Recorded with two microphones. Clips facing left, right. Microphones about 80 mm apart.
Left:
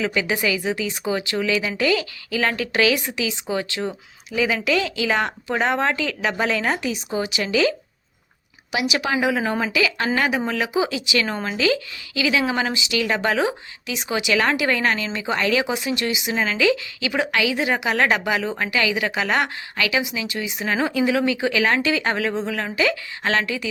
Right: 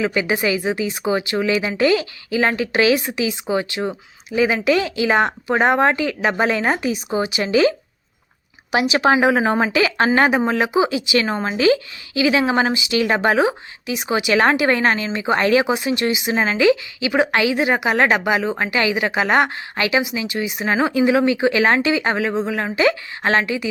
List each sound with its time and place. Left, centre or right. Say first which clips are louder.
0.0 s speech: right 3 dB; right